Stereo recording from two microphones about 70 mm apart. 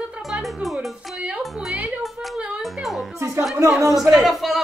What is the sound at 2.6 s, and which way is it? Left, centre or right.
Music, centre.